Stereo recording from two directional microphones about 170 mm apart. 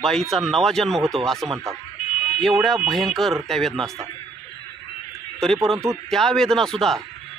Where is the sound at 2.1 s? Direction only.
35° left (ahead or behind).